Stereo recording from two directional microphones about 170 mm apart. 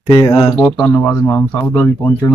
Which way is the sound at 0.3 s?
35° left (ahead or behind).